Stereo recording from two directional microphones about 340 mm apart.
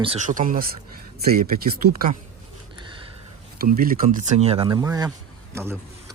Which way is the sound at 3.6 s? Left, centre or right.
Right.